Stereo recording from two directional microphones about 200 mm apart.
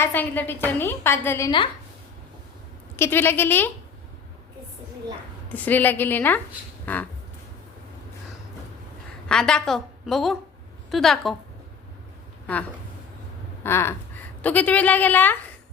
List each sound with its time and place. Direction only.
0.0 s a woman's voice: 10° left (ahead or behind)
2.9 s a woman's voice: 10° left (ahead or behind)
5.5 s a woman's voice: 10° left (ahead or behind)
6.8 s a sound: 10° left (ahead or behind)
9.3 s a woman's voice: 5° left (ahead or behind)
13.6 s a sound: 10° left (ahead or behind)
14.4 s a woman's voice: 5° left (ahead or behind)